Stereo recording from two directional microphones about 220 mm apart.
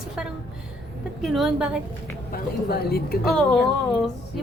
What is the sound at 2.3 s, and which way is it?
Speech, 45° left (ahead or behind).